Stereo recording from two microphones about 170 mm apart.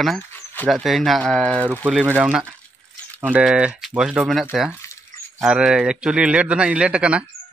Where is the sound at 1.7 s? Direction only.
5° right (ahead or behind).